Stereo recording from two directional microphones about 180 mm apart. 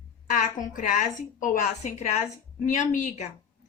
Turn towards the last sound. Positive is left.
turn(degrees=45)  # may be behind; listen again after turning